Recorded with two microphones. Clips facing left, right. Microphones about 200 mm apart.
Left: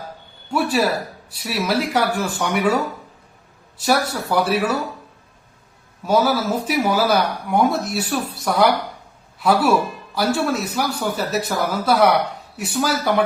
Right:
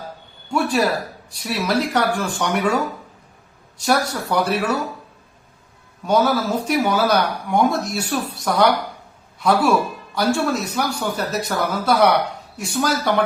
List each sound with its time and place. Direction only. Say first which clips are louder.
0.5 s speech: even; 5° left (ahead or behind)
6.1 s speech: even; 5° left (ahead or behind)